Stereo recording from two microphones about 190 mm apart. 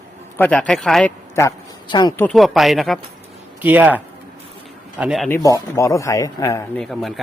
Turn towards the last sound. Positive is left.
turn(degrees=0)  # may be behind; listen again after turning